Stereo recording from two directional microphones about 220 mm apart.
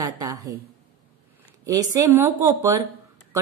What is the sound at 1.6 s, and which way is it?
A woman's voice, 15° right (ahead or behind).